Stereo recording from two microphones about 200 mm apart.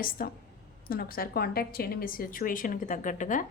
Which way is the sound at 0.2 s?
45° left (ahead or behind).